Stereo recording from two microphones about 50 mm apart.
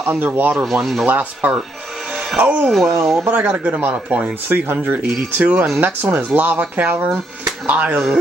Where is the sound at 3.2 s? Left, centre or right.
Right.